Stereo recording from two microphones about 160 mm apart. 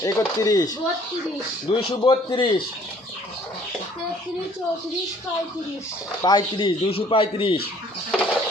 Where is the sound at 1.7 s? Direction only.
35° left (ahead or behind).